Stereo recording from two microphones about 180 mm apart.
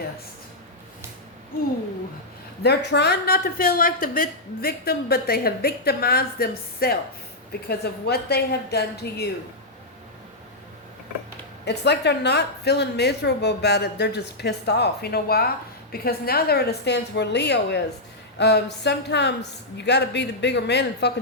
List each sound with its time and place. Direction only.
2.6 s a woman's voice: 65° left (ahead or behind)
11.6 s a woman's voice: 70° left (ahead or behind)